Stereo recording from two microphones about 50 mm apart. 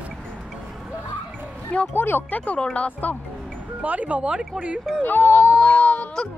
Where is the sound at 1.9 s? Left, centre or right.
Left.